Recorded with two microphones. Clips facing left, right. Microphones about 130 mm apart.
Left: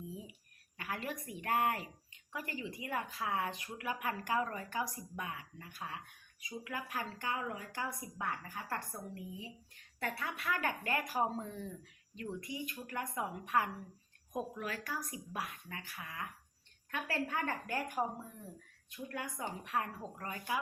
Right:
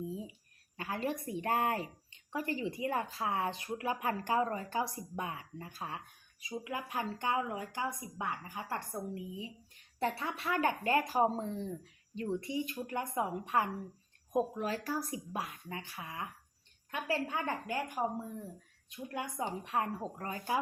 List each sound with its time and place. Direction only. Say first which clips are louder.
0.0 s a sound: right 6 dB; 25° right (ahead or behind)
0.8 s speech: right 5 dB; 30° right (ahead or behind)
18.9 s speech: right 3 dB; 20° right (ahead or behind)